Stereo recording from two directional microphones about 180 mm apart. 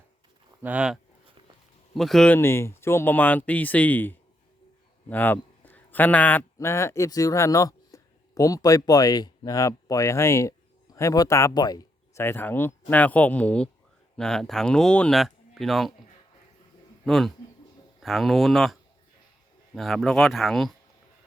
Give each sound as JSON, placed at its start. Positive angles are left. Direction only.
{"t": 0.6, "sound": "speech", "side_deg": -5}
{"t": 2.0, "sound": "a man's voice", "side_deg": 0}
{"t": 17.1, "sound": "speech", "side_deg": 0}